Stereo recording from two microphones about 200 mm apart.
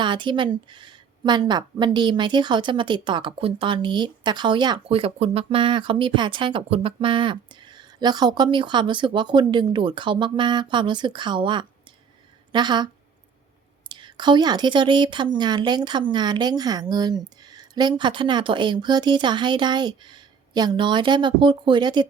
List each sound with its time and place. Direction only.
0.0 s a woman's voice: 25° right (ahead or behind)